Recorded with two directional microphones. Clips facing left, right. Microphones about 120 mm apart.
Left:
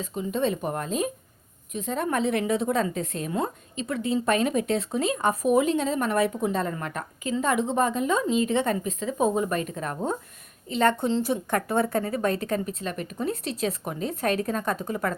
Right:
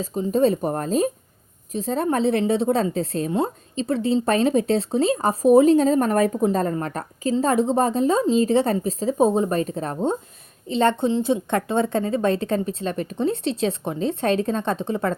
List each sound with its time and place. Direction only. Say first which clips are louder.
0.0 s a woman's voice: right 7 dB; 35° right (ahead or behind)